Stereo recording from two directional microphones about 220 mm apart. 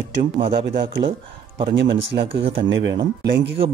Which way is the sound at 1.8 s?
55° right (ahead or behind).